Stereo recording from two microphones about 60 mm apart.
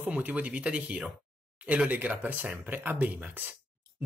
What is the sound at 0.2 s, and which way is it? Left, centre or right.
Speech, right.